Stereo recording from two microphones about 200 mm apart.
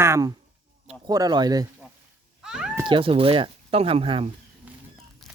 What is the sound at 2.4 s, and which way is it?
Cat, 5° right (ahead or behind).